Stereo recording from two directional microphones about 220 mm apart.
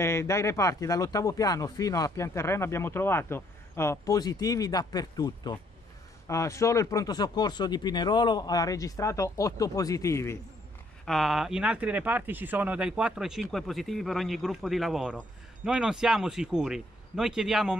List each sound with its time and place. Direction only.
0.0 s speech: 10° left (ahead or behind)
11.1 s speech: centre (ahead or behind)